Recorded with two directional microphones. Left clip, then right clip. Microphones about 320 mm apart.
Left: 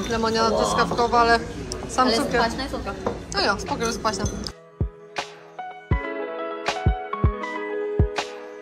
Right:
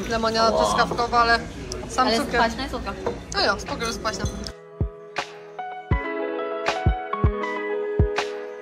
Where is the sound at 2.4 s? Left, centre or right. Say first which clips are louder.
Right 1 dB; right.